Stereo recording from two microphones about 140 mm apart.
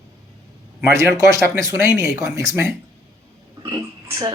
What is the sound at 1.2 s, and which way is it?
A woman's voice, 20° right (ahead or behind).